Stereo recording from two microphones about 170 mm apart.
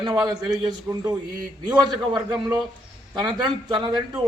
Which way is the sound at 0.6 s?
20° right (ahead or behind).